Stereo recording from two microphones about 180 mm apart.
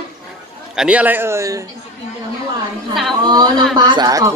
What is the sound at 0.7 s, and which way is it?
Speech, 5° right (ahead or behind).